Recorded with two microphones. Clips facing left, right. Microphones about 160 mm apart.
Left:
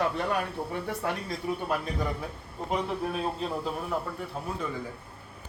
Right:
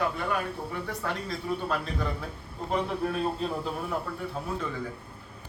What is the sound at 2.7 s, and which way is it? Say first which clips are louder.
A man's voice: right 1 dB; 5° left (ahead or behind).